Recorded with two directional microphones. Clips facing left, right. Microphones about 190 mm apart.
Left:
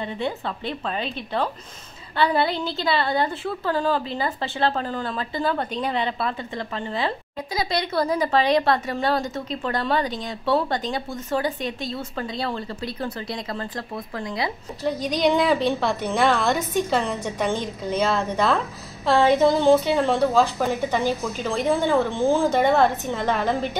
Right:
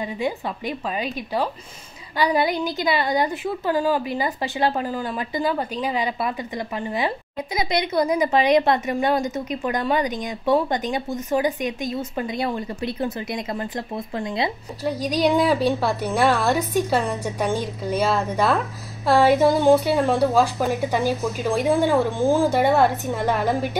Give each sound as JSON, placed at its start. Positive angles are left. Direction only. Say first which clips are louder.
{"t": 0.0, "sound": "a woman's voice", "louder": "right 2 dB", "side_deg": -10}
{"t": 14.8, "sound": "a woman's voice", "louder": "right 1 dB", "side_deg": -10}